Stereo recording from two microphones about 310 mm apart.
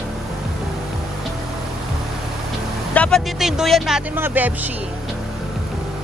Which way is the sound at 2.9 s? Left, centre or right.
Centre.